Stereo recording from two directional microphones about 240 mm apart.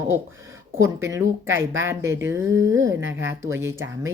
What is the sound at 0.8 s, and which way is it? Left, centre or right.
Speech, centre.